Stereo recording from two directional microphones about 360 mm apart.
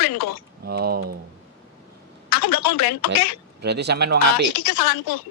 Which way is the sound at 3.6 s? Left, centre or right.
Right.